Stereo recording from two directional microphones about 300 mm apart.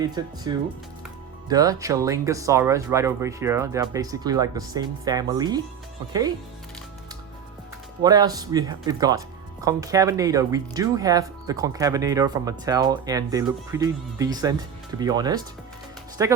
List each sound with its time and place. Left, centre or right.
0.0 s speech: centre
8.0 s speech: centre